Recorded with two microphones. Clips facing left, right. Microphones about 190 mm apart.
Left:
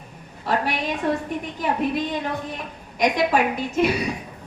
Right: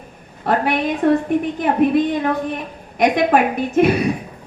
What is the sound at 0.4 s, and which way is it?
A woman's voice, 55° right (ahead or behind).